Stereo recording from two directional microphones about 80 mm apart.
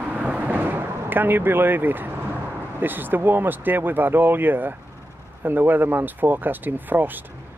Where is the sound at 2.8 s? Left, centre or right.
Right.